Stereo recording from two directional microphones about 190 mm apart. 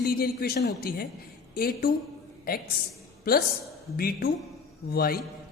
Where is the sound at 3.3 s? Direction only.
55° left (ahead or behind).